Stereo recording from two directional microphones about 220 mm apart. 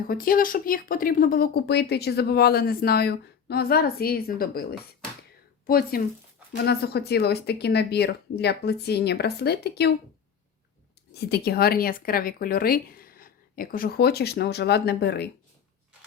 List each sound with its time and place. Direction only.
0.1 s speech: 40° left (ahead or behind)
11.1 s speech: 45° left (ahead or behind)